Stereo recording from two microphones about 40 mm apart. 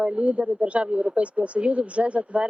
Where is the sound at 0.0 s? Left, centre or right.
Right.